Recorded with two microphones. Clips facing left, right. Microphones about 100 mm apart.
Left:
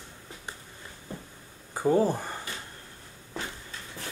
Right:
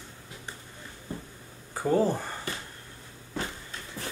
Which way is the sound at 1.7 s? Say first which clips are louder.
Left 1 dB; 15° left (ahead or behind).